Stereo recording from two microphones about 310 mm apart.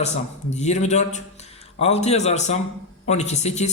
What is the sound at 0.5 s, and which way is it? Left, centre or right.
Speech, left.